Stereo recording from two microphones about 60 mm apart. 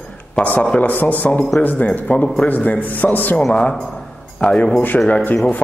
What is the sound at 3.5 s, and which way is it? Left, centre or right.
A man's voice, centre.